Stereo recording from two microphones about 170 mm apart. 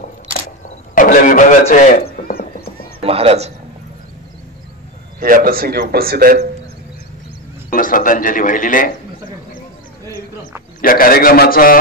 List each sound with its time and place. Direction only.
0.9 s a sound: 50° left (ahead or behind)
2.0 s horse: 60° left (ahead or behind)
3.0 s a sound: 35° right (ahead or behind)
5.2 s a man's voice: 60° right (ahead or behind)
7.7 s a man's voice: 55° left (ahead or behind)
10.8 s a man's voice: 55° left (ahead or behind)